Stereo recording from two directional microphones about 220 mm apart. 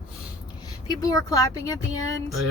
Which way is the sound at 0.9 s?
15° left (ahead or behind).